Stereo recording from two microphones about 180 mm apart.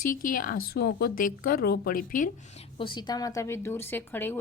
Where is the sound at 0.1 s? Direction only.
50° left (ahead or behind).